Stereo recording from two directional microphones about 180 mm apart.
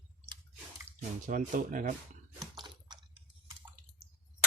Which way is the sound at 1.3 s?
50° right (ahead or behind).